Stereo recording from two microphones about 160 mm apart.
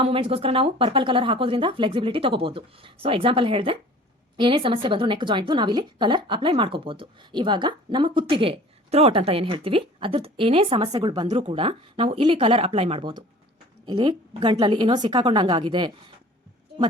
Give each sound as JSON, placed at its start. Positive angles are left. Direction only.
{"t": 0.0, "sound": "a woman's voice", "side_deg": -35}